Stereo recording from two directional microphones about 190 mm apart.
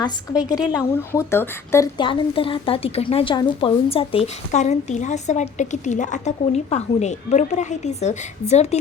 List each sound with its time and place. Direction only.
0.4 s a woman's voice: 20° left (ahead or behind)
2.0 s a woman's voice: 25° left (ahead or behind)